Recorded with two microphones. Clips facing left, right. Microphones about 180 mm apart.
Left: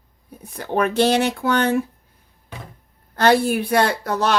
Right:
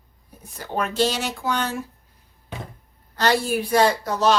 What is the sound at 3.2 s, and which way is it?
Speech, 55° left (ahead or behind).